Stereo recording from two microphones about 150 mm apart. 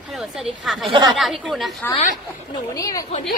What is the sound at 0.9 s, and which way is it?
Speech, 30° right (ahead or behind).